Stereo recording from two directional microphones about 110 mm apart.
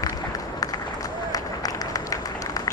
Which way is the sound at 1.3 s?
35° left (ahead or behind).